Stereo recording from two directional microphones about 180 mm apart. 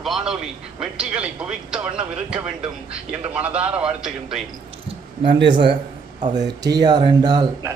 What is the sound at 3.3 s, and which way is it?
A man's voice, 5° right (ahead or behind).